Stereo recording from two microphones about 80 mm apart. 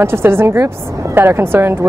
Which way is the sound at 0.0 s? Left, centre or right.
Right.